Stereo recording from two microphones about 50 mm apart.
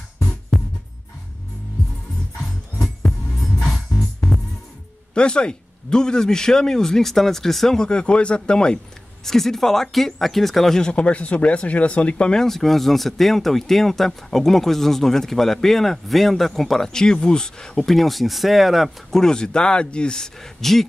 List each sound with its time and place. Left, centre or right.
2.8 s music: centre
5.1 s a man's voice: centre
9.2 s a man's voice: centre
10.9 s speech: left
12.4 s speech: centre
19.0 s a man's voice: centre